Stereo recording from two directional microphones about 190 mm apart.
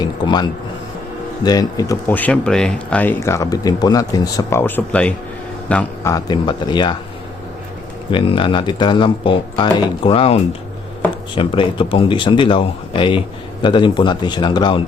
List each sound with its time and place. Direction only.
0.0 s a sound: 25° left (ahead or behind)
1.5 s speech: 20° left (ahead or behind)
8.1 s speech: 30° left (ahead or behind)